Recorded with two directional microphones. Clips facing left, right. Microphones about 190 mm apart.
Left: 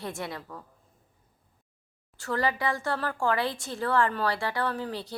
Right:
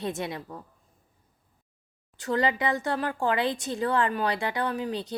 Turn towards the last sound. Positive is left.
turn(degrees=-20)  # may be behind; listen again after turning